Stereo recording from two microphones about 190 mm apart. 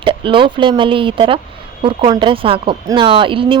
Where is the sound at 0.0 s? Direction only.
25° right (ahead or behind).